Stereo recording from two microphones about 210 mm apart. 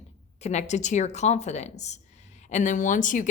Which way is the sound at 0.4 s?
35° left (ahead or behind).